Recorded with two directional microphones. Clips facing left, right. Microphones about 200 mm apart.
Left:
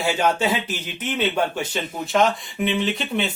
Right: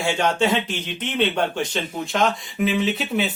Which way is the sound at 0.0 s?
5° left (ahead or behind).